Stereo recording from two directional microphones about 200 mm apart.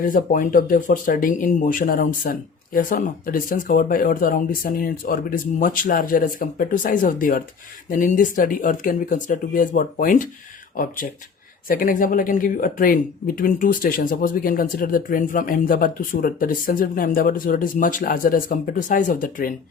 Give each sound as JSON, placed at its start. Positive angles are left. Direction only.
{"t": 0.0, "sound": "speech", "side_deg": 45}